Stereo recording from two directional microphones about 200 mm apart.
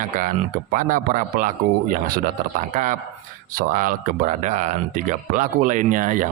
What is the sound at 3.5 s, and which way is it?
A man's voice, 40° right (ahead or behind).